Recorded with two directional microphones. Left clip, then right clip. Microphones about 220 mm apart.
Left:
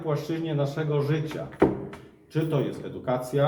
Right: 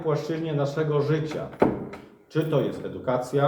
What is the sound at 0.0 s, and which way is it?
A man's voice, 10° left (ahead or behind).